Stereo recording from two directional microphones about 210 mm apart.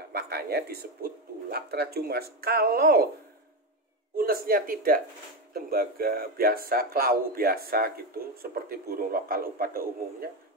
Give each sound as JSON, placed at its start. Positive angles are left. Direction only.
{"t": 0.1, "sound": "a sound", "side_deg": -50}
{"t": 1.5, "sound": "speech", "side_deg": -50}
{"t": 4.2, "sound": "speech", "side_deg": -45}